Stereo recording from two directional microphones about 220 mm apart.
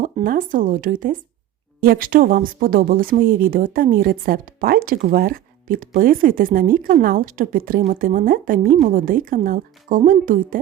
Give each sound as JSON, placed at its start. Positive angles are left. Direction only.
{"t": 0.0, "sound": "speech", "side_deg": -40}